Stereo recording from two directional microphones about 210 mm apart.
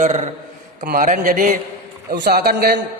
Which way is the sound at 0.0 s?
30° right (ahead or behind).